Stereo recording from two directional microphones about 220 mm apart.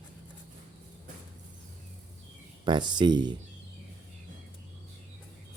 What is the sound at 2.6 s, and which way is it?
Speech, 20° right (ahead or behind).